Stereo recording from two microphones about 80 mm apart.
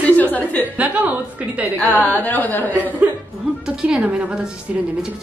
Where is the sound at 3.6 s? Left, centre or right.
Centre.